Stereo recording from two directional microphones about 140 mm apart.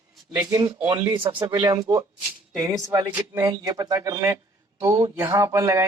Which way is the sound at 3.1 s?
15° right (ahead or behind).